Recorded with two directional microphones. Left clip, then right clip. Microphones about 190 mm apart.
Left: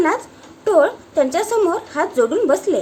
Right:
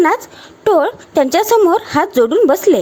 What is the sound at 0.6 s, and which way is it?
A woman's voice, 50° right (ahead or behind).